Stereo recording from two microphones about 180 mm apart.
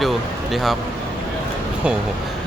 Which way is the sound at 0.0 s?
Centre (ahead or behind).